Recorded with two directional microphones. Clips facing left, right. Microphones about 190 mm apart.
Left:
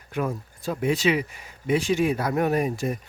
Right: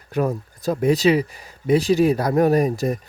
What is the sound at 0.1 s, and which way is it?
Speech, 40° right (ahead or behind).